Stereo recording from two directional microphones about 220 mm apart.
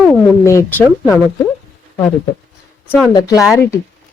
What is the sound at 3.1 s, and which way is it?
Speech, 15° left (ahead or behind).